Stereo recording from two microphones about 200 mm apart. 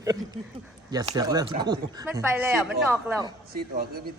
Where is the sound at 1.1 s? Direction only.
20° right (ahead or behind).